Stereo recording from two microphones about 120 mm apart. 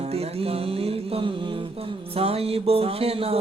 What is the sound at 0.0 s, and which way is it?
Music, 55° right (ahead or behind).